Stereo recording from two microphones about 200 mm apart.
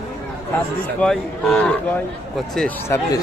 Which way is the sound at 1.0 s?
5° left (ahead or behind).